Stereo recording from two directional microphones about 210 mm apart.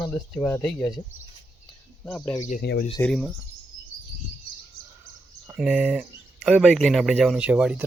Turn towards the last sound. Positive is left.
turn(degrees=-5)  # may be behind; listen again after turning